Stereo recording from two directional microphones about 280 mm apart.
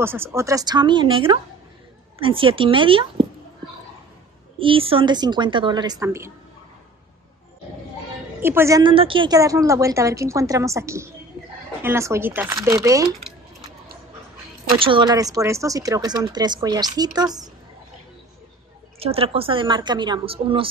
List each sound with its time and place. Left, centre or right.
0.0 s a woman's voice: centre
4.6 s a woman's voice: centre
8.4 s a woman's voice: centre
14.8 s a woman's voice: centre
18.9 s a woman's voice: right